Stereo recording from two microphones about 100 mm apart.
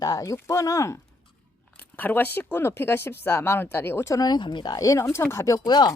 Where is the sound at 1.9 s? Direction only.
20° left (ahead or behind).